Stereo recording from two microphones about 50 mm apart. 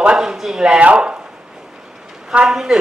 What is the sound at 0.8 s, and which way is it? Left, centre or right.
Speech, right.